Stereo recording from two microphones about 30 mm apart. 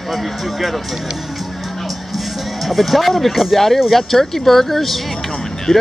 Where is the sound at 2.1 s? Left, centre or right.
Centre.